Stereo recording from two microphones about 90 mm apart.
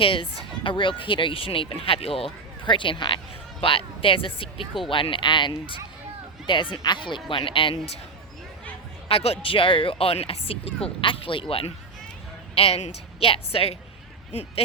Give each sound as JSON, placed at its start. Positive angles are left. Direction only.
{"t": 0.0, "sound": "speech", "side_deg": 80}
{"t": 0.6, "sound": "speech", "side_deg": 70}
{"t": 2.6, "sound": "speech", "side_deg": 65}
{"t": 3.6, "sound": "speech", "side_deg": 85}
{"t": 4.9, "sound": "speech", "side_deg": 70}
{"t": 7.3, "sound": "speech", "side_deg": 70}
{"t": 9.0, "sound": "speech", "side_deg": 85}
{"t": 13.1, "sound": "speech", "side_deg": 90}